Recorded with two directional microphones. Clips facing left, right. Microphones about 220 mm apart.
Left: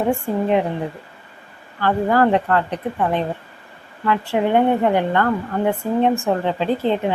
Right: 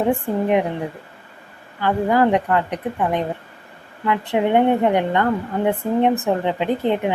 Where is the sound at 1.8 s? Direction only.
15° right (ahead or behind).